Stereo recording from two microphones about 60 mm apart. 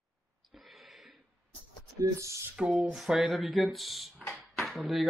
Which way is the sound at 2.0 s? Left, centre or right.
Right.